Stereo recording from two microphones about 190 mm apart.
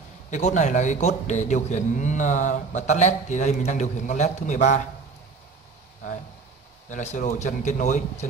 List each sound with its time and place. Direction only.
0.3 s a man's voice: 40° left (ahead or behind)
6.9 s a man's voice: 40° left (ahead or behind)